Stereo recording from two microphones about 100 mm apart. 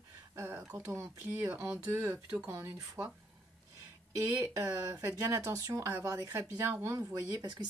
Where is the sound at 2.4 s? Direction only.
30° right (ahead or behind).